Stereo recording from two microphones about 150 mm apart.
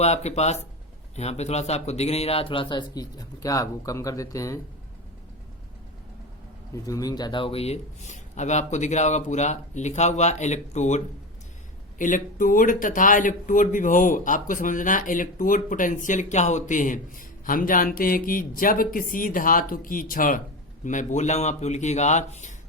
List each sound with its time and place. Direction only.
0.0 s speech: 45° left (ahead or behind); by 4.6 s 20° left (ahead or behind)
6.8 s speech: 25° left (ahead or behind); by 22.5 s 55° left (ahead or behind)